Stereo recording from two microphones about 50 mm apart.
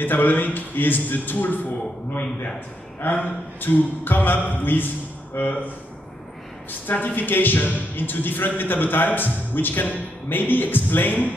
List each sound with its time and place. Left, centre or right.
0.0 s speech: left
3.0 s a man's voice: left
6.9 s speech: left